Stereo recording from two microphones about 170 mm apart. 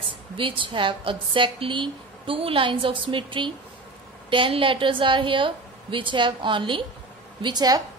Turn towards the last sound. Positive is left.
turn(degrees=-25)  # may be behind; listen again after turning